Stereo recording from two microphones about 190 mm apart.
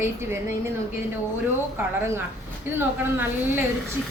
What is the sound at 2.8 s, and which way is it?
Speech, 10° right (ahead or behind).